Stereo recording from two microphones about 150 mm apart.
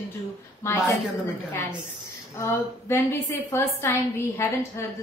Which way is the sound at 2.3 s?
15° left (ahead or behind).